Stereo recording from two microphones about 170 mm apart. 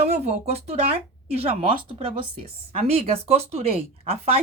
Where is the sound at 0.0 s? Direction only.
40° right (ahead or behind).